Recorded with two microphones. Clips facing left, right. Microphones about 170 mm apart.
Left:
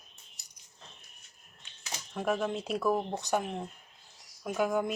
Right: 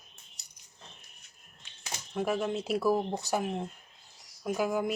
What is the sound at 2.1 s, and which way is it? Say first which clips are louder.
Speech: right 1 dB; centre (ahead or behind).